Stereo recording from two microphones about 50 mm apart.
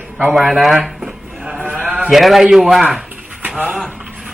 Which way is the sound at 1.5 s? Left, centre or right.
Right.